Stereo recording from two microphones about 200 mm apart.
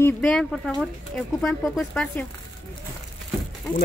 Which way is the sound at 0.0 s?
5° left (ahead or behind).